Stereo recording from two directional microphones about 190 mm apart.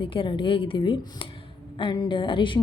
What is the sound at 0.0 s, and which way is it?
A woman's voice, 25° left (ahead or behind).